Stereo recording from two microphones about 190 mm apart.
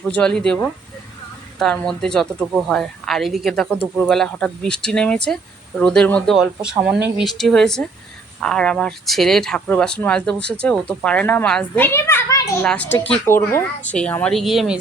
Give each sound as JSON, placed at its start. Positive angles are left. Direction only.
{"t": 0.0, "sound": "speech", "side_deg": 5}
{"t": 11.9, "sound": "a child's voice", "side_deg": 15}